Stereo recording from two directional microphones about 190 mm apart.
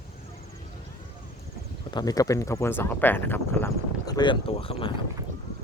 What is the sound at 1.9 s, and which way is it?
Speech, 20° left (ahead or behind).